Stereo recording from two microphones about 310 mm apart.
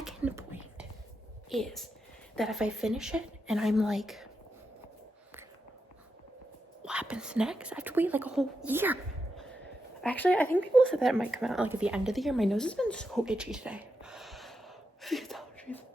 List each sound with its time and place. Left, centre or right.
0.0 s whispering: centre
1.5 s a woman's voice: centre
6.8 s speech: centre
10.0 s speech: centre
15.0 s a sound: centre